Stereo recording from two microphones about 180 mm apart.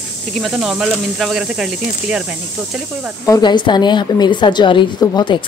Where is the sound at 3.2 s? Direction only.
20° left (ahead or behind).